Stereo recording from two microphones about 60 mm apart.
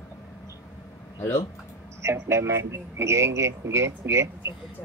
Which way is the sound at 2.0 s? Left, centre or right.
Right.